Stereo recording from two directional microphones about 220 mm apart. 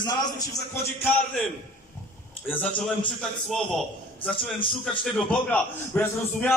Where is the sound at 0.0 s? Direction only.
15° left (ahead or behind).